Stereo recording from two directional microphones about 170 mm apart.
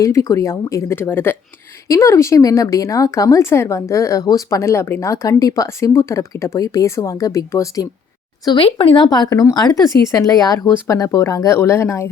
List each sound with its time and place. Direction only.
0.0 s speech: 20° left (ahead or behind)
8.4 s speech: 30° left (ahead or behind); by 12.0 s 15° left (ahead or behind)